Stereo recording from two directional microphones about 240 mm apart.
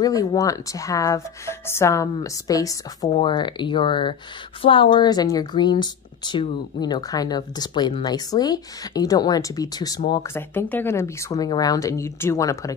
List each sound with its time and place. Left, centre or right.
0.0 s a woman's voice: centre